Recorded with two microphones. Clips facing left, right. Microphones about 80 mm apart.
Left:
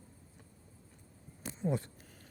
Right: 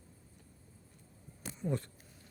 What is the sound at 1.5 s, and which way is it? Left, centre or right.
Speech, left.